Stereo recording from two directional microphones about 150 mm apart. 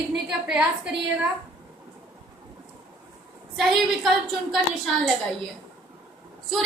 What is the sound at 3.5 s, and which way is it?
A woman's voice, centre (ahead or behind).